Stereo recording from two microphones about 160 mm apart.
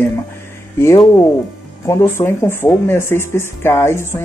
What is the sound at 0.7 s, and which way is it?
Speech, 20° left (ahead or behind).